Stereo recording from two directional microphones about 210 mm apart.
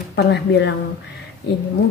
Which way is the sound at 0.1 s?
55° left (ahead or behind).